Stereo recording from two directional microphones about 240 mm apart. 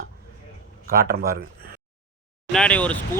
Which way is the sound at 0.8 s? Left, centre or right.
Right.